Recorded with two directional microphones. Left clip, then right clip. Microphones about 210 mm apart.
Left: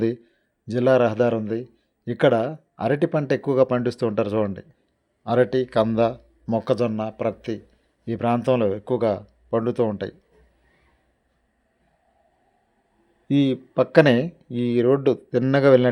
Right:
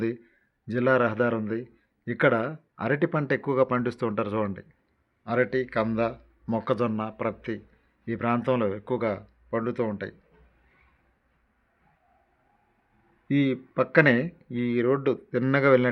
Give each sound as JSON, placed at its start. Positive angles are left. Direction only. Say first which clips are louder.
{"t": 0.7, "sound": "speech", "louder": "left 5 dB", "side_deg": 15}
{"t": 13.2, "sound": "speech", "louder": "left 4 dB", "side_deg": 15}